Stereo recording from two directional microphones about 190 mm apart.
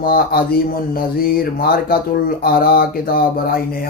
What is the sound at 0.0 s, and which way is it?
Mantra, 50° left (ahead or behind).